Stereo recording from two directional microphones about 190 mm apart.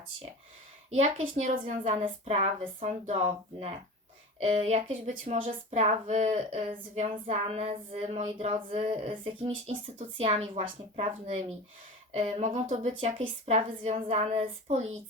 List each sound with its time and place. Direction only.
0.9 s speech: 35° right (ahead or behind)
12.8 s speech: 25° right (ahead or behind)